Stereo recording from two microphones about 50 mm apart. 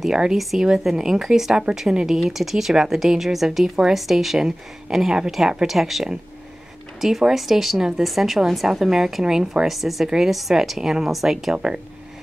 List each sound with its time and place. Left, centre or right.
0.0 s a woman's voice: centre
11.5 s a woman's voice: centre